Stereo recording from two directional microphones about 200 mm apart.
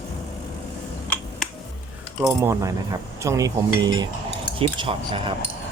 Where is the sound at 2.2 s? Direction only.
15° right (ahead or behind).